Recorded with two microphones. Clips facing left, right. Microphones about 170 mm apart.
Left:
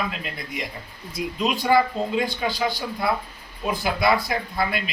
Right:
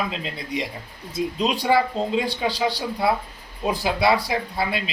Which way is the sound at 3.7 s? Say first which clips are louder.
Right 1 dB; 30° right (ahead or behind).